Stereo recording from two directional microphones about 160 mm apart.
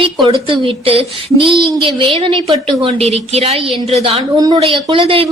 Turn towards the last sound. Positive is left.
turn(degrees=-35)  # may be behind; listen again after turning